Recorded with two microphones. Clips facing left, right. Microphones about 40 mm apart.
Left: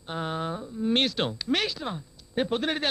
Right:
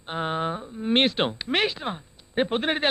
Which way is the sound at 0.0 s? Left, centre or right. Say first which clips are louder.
Right 4 dB; right.